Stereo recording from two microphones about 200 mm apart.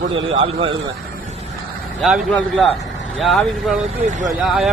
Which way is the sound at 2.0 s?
Centre (ahead or behind).